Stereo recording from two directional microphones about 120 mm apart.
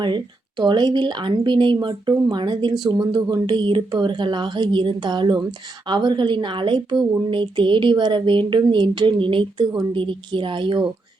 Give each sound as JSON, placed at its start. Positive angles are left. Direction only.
{"t": 0.0, "sound": "speech", "side_deg": -40}